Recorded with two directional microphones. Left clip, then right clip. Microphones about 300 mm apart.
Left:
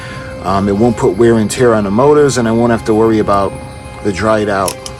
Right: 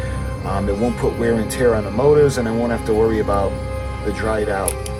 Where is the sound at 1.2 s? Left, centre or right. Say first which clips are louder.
Left 7 dB; left.